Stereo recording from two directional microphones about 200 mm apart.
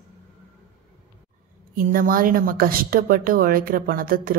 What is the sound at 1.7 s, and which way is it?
A woman's voice, 45° right (ahead or behind).